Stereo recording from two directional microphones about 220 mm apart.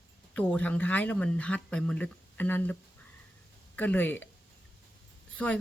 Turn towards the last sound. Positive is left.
turn(degrees=5)  # may be behind; listen again after turning